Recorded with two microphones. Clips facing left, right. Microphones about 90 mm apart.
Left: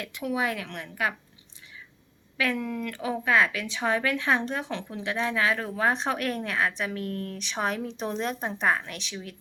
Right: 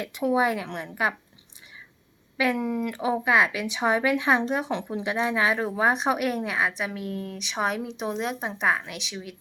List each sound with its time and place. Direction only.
0.0 s a woman's voice: 25° right (ahead or behind)
2.4 s speech: 20° right (ahead or behind)